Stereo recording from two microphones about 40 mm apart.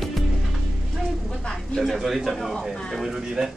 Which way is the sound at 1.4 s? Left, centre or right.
Centre.